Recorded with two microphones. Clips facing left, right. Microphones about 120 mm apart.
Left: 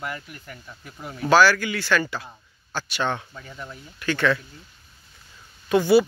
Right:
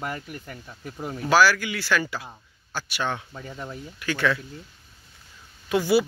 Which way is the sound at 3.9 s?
5° right (ahead or behind).